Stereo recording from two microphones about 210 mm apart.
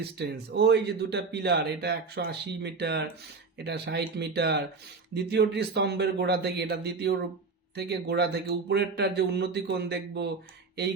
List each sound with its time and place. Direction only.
0.0 s speech: 50° right (ahead or behind)